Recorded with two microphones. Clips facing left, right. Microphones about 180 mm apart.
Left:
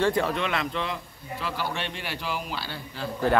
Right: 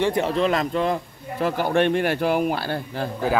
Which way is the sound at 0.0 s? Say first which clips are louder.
Right 2 dB; 20° right (ahead or behind).